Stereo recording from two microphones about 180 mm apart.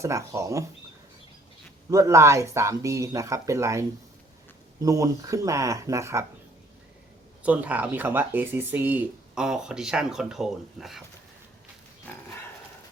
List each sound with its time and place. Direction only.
0.0 s speech: 15° right (ahead or behind)
1.9 s speech: 15° right (ahead or behind)
7.4 s speech: 10° right (ahead or behind)